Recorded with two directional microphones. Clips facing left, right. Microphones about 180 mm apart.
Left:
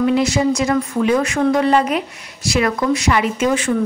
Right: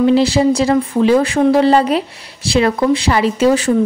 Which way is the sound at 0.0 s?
30° right (ahead or behind).